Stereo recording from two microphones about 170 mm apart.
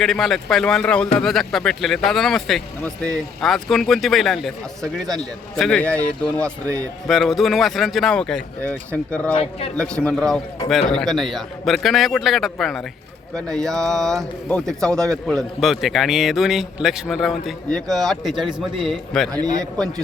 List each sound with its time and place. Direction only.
0.0 s a man's voice: centre (ahead or behind)
9.3 s a man's voice: 35° left (ahead or behind)
9.7 s a man's voice: 5° left (ahead or behind)
19.3 s a man's voice: 20° right (ahead or behind)